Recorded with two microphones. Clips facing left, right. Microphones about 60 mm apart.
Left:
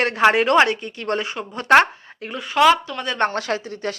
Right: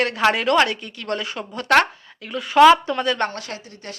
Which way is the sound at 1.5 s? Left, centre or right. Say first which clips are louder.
Left 3 dB; left.